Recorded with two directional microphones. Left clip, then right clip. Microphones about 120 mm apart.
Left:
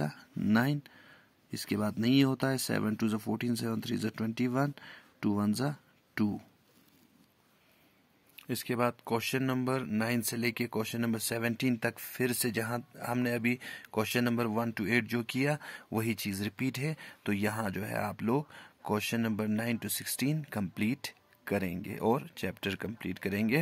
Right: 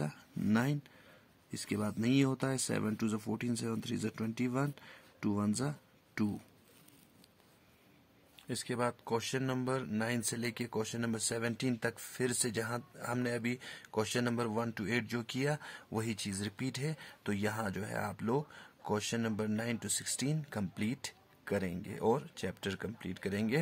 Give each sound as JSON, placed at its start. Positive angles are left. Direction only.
{"t": 0.0, "sound": "a sound", "side_deg": 25}
{"t": 0.4, "sound": "speech", "side_deg": 25}
{"t": 8.4, "sound": "speech", "side_deg": 35}